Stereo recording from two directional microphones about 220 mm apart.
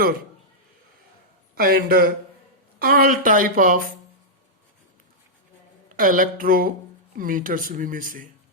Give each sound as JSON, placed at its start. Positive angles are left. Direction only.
{"t": 1.5, "sound": "speech", "side_deg": -45}
{"t": 6.0, "sound": "speech", "side_deg": -40}